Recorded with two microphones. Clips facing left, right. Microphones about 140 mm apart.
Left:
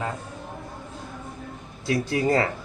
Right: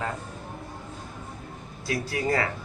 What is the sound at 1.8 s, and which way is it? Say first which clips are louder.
Speech: left 5 dB; 25° left (ahead or behind).